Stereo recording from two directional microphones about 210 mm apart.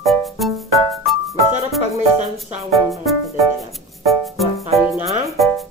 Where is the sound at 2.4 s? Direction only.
Centre (ahead or behind).